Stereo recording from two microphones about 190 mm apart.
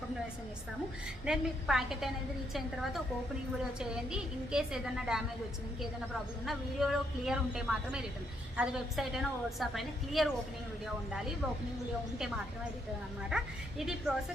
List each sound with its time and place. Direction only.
1.2 s a woman's voice: 5° right (ahead or behind)
3.8 s a woman's voice: 5° right (ahead or behind)
6.4 s a woman's voice: centre (ahead or behind)
13.3 s a woman's voice: centre (ahead or behind)